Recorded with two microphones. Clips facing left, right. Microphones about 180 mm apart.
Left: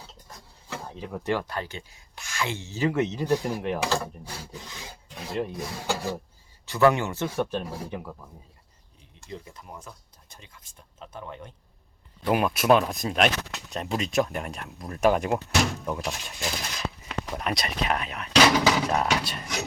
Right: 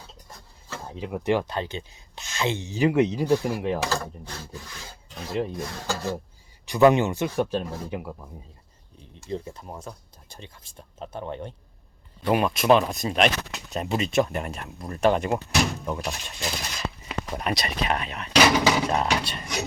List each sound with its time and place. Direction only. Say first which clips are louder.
0.9 s speech: right 4 dB; 15° right (ahead or behind)
3.8 s speech: left 1 dB; 10° left (ahead or behind)
4.6 s rub: left 1 dB; 20° left (ahead or behind)
5.4 s speech: right 2 dB; centre (ahead or behind)
6.7 s speech: right 3 dB; 20° right (ahead or behind)
7.6 s speech: right 1 dB; 10° left (ahead or behind)
7.9 s speech: right 3 dB; 10° right (ahead or behind)
9.3 s speech: right 7 dB; 30° right (ahead or behind)
12.2 s speech: right 1 dB; centre (ahead or behind)
18.9 s speech: right 1 dB; centre (ahead or behind)